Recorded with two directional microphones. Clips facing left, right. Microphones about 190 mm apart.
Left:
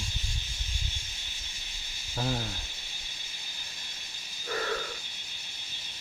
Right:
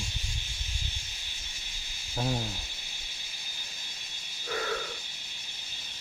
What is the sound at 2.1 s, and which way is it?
Speech, 10° right (ahead or behind).